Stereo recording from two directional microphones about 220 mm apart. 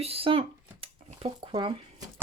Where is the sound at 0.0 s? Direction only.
25° right (ahead or behind).